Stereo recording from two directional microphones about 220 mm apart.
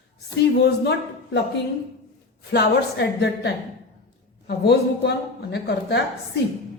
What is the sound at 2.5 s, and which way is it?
A woman's voice, 50° left (ahead or behind).